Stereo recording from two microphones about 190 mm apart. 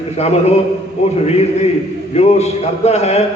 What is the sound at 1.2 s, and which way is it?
A man's voice, 35° left (ahead or behind).